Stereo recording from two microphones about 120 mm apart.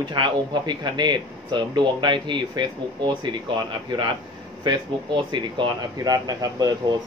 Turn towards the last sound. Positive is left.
turn(degrees=-35)  # may be behind; listen again after turning